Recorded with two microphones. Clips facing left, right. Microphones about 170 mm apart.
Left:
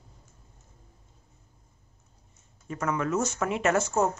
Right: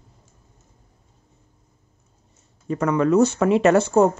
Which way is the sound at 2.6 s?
35° right (ahead or behind).